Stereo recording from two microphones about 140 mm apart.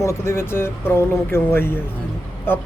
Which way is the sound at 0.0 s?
20° left (ahead or behind).